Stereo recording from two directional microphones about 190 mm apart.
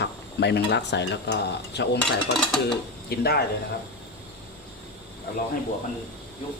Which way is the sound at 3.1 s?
55° left (ahead or behind).